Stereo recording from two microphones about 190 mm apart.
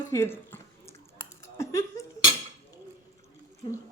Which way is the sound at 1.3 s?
15° left (ahead or behind).